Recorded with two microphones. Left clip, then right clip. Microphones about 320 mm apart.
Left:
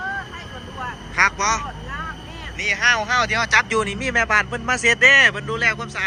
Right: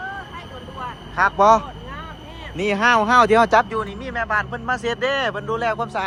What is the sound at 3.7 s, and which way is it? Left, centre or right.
Speech, centre.